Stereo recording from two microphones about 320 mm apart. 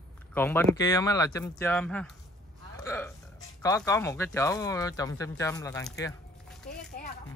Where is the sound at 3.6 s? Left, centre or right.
Centre.